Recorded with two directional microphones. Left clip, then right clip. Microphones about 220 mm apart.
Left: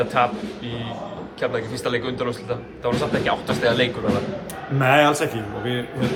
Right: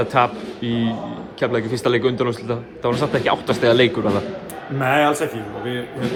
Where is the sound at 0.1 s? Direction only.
30° right (ahead or behind).